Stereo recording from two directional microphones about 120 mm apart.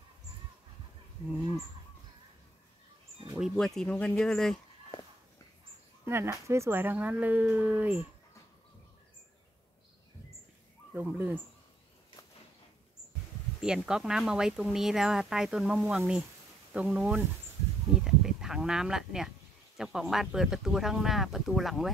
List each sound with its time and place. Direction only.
3.5 s speech: 5° left (ahead or behind)
6.0 s speech: 20° right (ahead or behind)
10.9 s speech: 15° right (ahead or behind)
13.6 s speech: 5° right (ahead or behind)